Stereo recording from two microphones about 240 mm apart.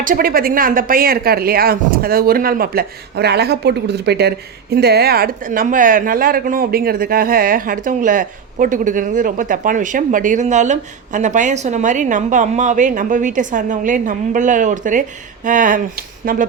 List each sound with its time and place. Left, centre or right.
0.0 s speech: right